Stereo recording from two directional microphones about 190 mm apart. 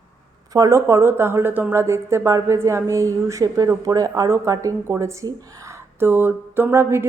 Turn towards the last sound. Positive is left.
turn(degrees=-10)  # may be behind; listen again after turning